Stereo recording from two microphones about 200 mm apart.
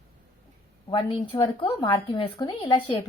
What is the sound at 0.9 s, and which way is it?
Speech, 25° left (ahead or behind).